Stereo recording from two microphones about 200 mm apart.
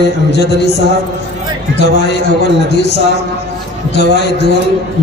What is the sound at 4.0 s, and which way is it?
Speech, 55° left (ahead or behind).